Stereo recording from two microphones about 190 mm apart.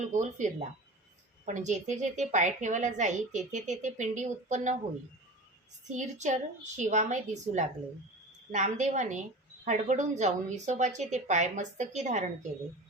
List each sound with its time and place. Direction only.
0.1 s a woman's voice: 40° right (ahead or behind)
5.9 s a woman's voice: 40° right (ahead or behind)